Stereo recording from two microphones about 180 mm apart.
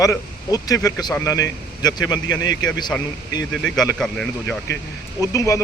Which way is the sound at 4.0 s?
5° left (ahead or behind).